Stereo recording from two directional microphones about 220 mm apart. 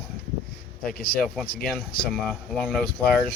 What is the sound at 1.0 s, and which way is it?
Speech, 45° left (ahead or behind).